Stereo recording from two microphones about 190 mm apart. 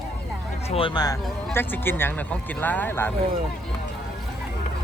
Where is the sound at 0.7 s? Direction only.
25° left (ahead or behind).